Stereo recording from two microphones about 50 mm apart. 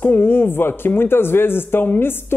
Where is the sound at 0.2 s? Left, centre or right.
Left.